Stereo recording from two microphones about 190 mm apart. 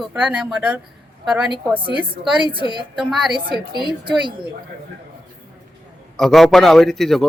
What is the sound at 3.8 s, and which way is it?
Speech, 25° right (ahead or behind).